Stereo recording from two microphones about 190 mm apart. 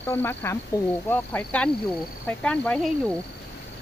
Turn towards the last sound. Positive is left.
turn(degrees=5)  # may be behind; listen again after turning